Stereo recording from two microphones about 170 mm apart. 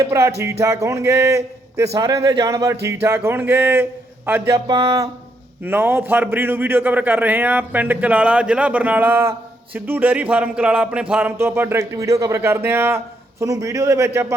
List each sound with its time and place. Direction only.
0.0 s a man's voice: 15° right (ahead or behind)
4.5 s speech: 25° right (ahead or behind)
5.6 s a man's voice: 10° right (ahead or behind)